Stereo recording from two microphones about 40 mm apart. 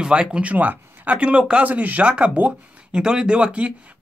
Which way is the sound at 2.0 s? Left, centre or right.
Right.